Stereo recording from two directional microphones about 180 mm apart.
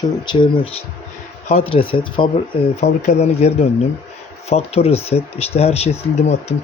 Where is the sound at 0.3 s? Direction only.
30° left (ahead or behind).